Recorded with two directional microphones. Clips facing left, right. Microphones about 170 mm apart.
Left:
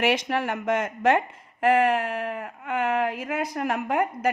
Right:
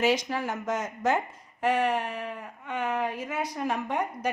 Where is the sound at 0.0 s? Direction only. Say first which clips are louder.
Left 2 dB; 70° left (ahead or behind).